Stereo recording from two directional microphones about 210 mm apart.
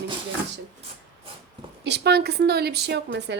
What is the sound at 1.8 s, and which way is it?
Speech, 55° right (ahead or behind).